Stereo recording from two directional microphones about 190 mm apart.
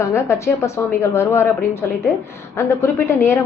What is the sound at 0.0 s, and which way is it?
A woman's voice, 15° left (ahead or behind).